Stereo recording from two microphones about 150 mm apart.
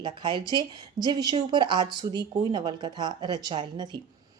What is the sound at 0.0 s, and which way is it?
Speech, 30° right (ahead or behind).